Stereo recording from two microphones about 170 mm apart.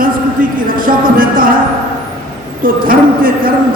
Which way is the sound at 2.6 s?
55° right (ahead or behind).